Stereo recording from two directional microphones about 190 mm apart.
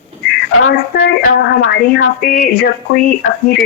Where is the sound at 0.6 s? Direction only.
90° left.